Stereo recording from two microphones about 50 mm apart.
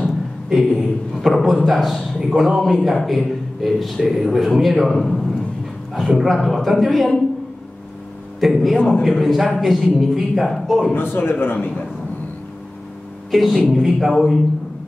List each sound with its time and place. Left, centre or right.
0.5 s a sound: centre
1.1 s a man's voice: centre
8.4 s a man's voice: centre
11.0 s a man's voice: left
13.3 s a man's voice: centre